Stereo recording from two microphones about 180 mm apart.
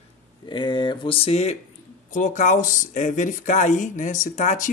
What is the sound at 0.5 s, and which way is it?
Speech, 25° left (ahead or behind).